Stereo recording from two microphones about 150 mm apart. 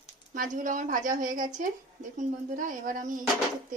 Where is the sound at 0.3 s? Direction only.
60° right (ahead or behind).